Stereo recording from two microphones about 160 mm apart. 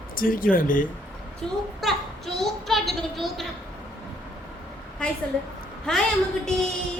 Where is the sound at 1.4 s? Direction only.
5° left (ahead or behind).